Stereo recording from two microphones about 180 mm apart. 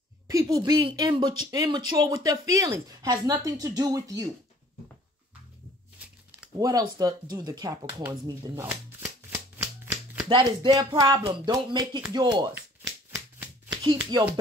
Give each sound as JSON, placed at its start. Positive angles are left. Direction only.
{"t": 0.3, "sound": "speech", "side_deg": -20}
{"t": 6.6, "sound": "speech", "side_deg": -20}
{"t": 10.2, "sound": "speech", "side_deg": -25}
{"t": 13.8, "sound": "speech", "side_deg": -25}